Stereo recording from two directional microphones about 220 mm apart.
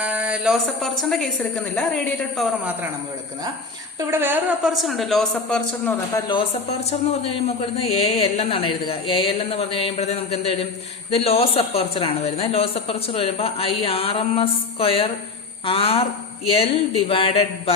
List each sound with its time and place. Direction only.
0.0 s a woman's voice: 5° right (ahead or behind)
4.1 s a woman's voice: 10° right (ahead or behind)
6.1 s a man's voice: 20° left (ahead or behind)